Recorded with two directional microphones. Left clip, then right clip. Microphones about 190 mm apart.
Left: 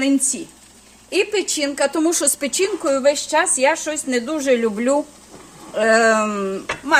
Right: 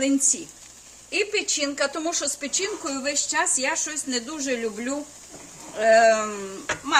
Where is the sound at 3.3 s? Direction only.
40° left (ahead or behind).